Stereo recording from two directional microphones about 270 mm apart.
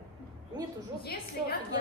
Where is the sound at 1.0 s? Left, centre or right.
Left.